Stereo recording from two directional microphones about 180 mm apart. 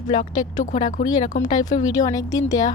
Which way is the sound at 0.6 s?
45° left (ahead or behind).